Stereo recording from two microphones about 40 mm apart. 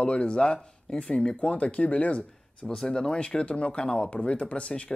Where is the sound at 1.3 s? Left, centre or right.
Left.